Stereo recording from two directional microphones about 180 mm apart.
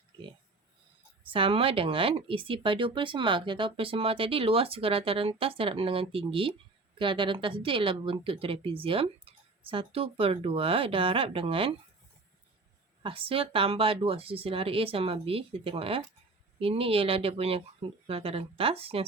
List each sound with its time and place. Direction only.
1.3 s a woman's voice: 30° right (ahead or behind)
13.0 s a woman's voice: 30° right (ahead or behind)